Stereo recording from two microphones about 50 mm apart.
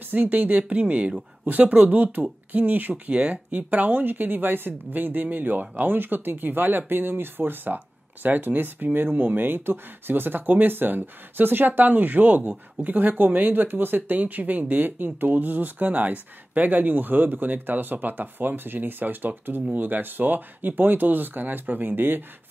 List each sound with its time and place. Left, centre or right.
0.0 s speech: right